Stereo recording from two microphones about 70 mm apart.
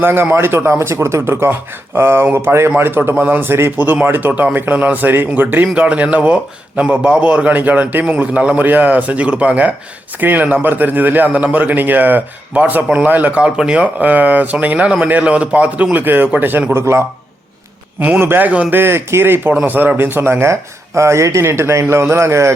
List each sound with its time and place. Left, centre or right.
0.0 s speech: right
18.0 s speech: right
18.8 s speech: right